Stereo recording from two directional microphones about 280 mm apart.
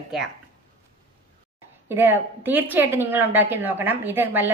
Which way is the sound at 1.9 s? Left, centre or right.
Centre.